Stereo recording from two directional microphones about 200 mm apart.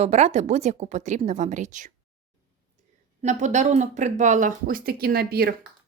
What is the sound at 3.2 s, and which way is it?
Speech, 35° right (ahead or behind).